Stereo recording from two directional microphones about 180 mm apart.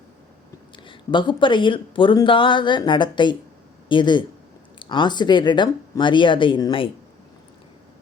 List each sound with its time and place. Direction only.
0.9 s speech: 25° left (ahead or behind)